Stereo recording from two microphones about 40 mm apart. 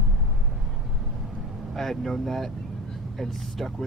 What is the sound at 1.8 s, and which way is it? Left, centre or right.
Speech, centre.